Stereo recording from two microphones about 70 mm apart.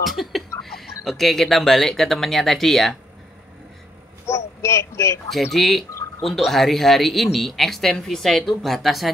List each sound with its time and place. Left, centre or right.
0.2 s speech: centre
4.3 s speech: left
5.3 s speech: centre